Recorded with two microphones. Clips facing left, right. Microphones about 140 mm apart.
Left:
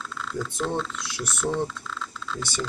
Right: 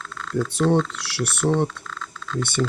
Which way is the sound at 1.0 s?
75° right (ahead or behind).